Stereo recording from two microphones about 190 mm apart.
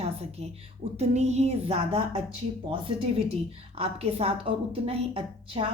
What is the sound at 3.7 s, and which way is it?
A woman's voice, 30° right (ahead or behind).